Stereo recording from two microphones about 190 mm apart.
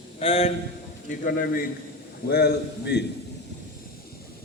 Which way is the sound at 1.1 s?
50° left (ahead or behind).